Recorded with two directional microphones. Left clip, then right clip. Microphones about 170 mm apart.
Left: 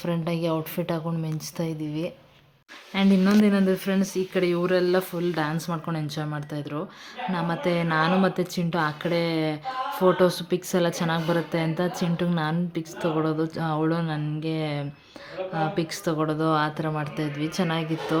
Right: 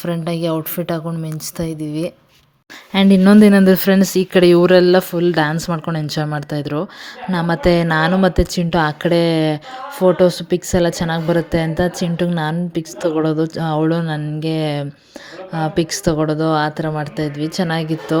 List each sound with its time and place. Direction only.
0.0 s a woman's voice: 25° right (ahead or behind)
2.9 s speech: 45° right (ahead or behind)
10.0 s a woman's voice: 25° right (ahead or behind)